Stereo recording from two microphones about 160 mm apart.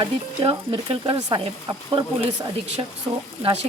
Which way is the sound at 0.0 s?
35° right (ahead or behind).